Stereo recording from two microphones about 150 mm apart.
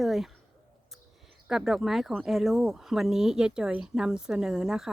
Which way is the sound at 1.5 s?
Centre (ahead or behind).